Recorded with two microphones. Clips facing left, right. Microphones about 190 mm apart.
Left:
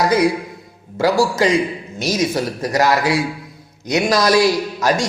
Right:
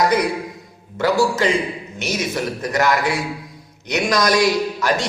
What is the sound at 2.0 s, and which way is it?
Speech, 35° left (ahead or behind).